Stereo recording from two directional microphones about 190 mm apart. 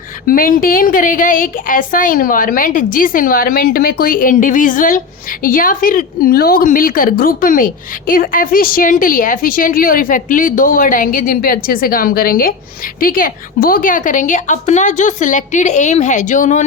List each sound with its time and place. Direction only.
0.3 s a woman's voice: 45° left (ahead or behind)